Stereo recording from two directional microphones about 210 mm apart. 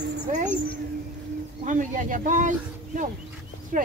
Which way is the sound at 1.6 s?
40° right (ahead or behind).